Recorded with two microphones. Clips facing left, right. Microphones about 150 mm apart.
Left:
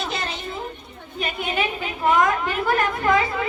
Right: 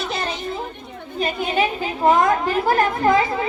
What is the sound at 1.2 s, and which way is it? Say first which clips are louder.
A woman's voice: right 4 dB; 35° right (ahead or behind).